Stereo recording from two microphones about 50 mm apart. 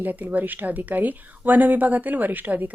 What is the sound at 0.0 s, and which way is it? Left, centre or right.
Speech, right.